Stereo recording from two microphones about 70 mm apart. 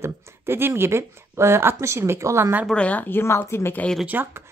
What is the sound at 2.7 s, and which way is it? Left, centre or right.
Speech, left.